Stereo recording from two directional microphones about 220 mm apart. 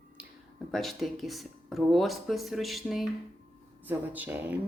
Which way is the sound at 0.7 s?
Centre (ahead or behind).